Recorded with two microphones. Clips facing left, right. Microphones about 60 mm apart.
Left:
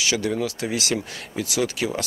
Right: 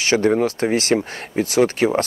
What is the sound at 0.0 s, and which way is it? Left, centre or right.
Speech, right.